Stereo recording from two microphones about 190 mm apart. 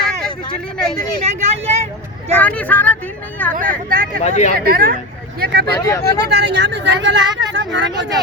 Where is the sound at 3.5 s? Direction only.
45° right (ahead or behind).